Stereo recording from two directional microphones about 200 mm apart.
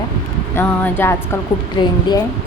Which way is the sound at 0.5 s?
10° left (ahead or behind).